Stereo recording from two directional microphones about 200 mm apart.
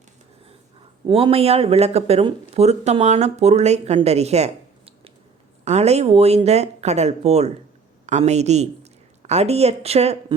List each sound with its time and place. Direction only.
1.0 s speech: 25° right (ahead or behind)